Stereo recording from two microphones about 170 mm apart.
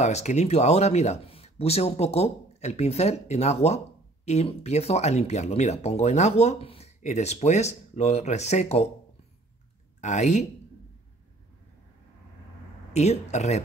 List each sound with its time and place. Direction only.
0.0 s speech: 40° left (ahead or behind)
9.9 s speech: 45° left (ahead or behind)
12.9 s speech: 40° left (ahead or behind)